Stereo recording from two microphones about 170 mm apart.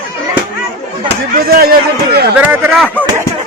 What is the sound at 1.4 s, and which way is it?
Speech, 65° right (ahead or behind).